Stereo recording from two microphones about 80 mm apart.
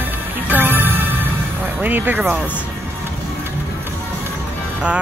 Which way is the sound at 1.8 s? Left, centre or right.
Right.